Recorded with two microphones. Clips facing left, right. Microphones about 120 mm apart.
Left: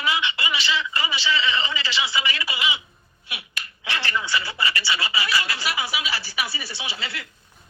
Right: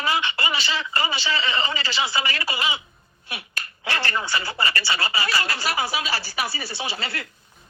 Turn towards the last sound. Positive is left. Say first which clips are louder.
# right 3 dB
turn(degrees=-40)  # may be behind; listen again after turning